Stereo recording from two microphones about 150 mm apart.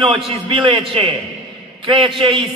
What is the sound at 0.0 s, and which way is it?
A man's voice, 35° right (ahead or behind).